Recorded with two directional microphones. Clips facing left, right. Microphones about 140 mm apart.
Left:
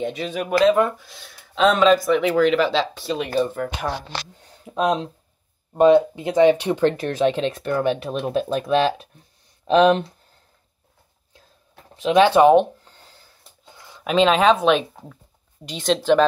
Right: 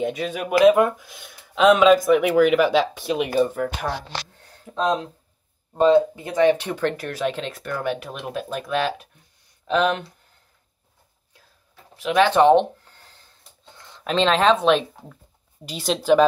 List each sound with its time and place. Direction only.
0.0 s speech: 5° right (ahead or behind)
4.4 s speech: 15° left (ahead or behind); by 10.0 s 30° left (ahead or behind)
12.0 s speech: 20° left (ahead or behind); by 16.3 s 10° right (ahead or behind)